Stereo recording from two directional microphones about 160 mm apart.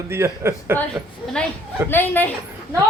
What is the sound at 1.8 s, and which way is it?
Speech, 10° left (ahead or behind).